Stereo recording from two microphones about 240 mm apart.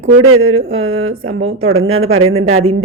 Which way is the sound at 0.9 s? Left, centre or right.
Right.